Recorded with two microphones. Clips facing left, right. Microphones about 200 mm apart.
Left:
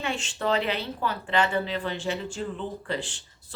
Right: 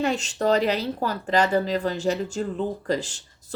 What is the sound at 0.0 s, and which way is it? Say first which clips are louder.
Speech: right 6 dB; 40° right (ahead or behind).